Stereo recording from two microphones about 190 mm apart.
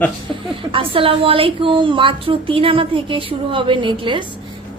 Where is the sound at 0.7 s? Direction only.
30° right (ahead or behind).